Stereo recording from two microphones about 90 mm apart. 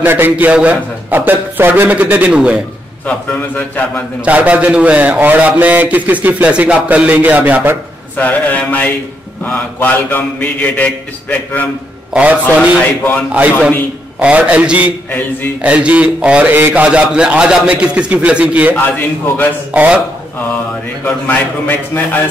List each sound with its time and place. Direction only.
0.0 s a man's voice: 20° right (ahead or behind)
3.1 s a man's voice: 15° left (ahead or behind)
4.2 s a man's voice: 15° right (ahead or behind)
8.2 s a man's voice: 20° left (ahead or behind)
12.1 s a man's voice: 15° right (ahead or behind)
14.2 s a man's voice: 15° right (ahead or behind)
15.0 s a man's voice: 20° left (ahead or behind)
15.6 s a man's voice: 15° right (ahead or behind)
18.8 s a man's voice: 20° left (ahead or behind)
19.7 s a man's voice: 15° right (ahead or behind)
21.0 s a man's voice: 20° left (ahead or behind)